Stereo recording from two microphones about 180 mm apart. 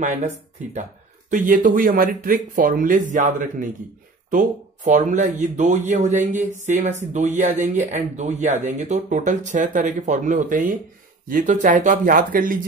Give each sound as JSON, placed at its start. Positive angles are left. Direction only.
{"t": 1.3, "sound": "speech", "side_deg": -45}